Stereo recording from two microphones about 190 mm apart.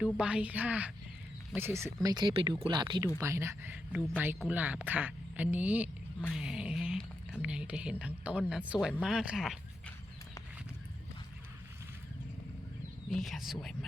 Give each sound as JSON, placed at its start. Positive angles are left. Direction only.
{"t": 0.2, "sound": "speech", "side_deg": -5}
{"t": 2.0, "sound": "a woman's voice", "side_deg": -25}
{"t": 13.1, "sound": "a woman's voice", "side_deg": 0}